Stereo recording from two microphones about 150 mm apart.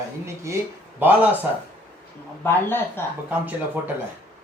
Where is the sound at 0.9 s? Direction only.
10° right (ahead or behind).